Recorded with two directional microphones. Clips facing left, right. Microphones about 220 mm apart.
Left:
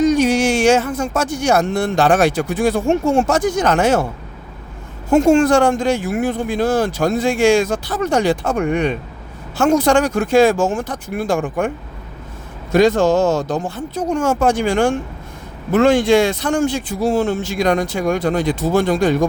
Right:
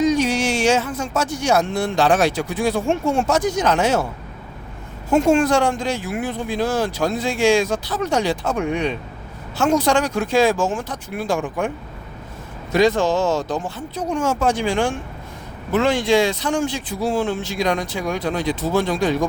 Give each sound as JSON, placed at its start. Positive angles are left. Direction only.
{"t": 0.0, "sound": "speech", "side_deg": 50}
{"t": 5.1, "sound": "speech", "side_deg": 45}
{"t": 12.7, "sound": "speech", "side_deg": 45}